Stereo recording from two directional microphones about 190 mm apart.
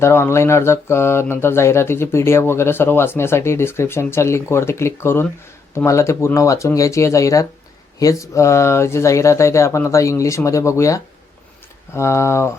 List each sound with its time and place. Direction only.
0.0 s speech: 15° left (ahead or behind)